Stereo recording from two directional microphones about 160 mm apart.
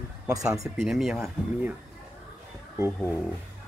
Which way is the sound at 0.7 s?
Centre (ahead or behind).